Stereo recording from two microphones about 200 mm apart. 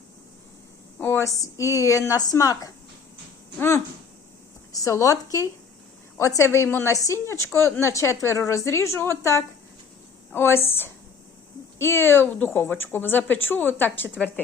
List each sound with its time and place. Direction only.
0.9 s a woman's voice: 10° left (ahead or behind)
4.7 s a woman's voice: 15° left (ahead or behind)